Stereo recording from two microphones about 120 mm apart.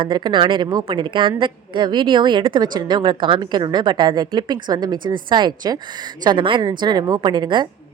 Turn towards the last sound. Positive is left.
turn(degrees=-40)  # may be behind; listen again after turning